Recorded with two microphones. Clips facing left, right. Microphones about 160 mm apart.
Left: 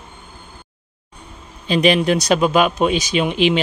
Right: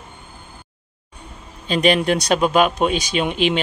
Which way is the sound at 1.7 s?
45° right (ahead or behind).